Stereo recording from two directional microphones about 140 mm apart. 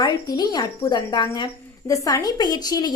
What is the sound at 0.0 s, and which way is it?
A woman's voice, 30° left (ahead or behind).